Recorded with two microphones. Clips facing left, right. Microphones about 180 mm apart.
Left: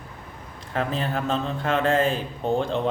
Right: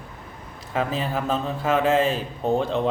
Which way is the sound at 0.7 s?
5° right (ahead or behind).